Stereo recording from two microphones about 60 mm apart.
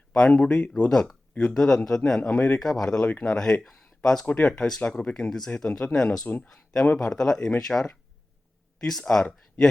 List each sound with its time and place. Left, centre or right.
0.1 s speech: centre
0.9 s speech: centre
1.3 s speech: left
1.5 s speech: centre
3.0 s speech: left
3.2 s speech: centre
6.2 s speech: left
6.8 s speech: centre